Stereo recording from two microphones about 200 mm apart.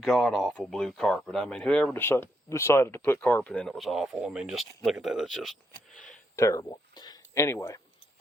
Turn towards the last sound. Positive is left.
turn(degrees=15)  # may be behind; listen again after turning